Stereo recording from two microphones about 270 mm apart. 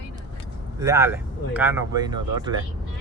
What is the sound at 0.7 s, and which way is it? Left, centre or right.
Speech, centre.